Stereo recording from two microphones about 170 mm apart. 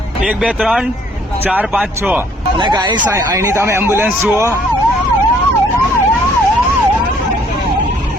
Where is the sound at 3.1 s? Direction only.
15° right (ahead or behind).